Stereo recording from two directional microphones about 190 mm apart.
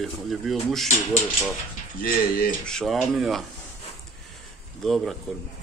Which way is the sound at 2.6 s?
5° left (ahead or behind).